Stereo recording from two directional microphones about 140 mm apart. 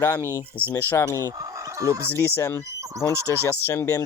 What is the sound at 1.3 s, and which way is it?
Speech, 25° right (ahead or behind).